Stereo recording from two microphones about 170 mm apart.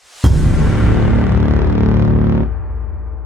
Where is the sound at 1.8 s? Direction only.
15° right (ahead or behind).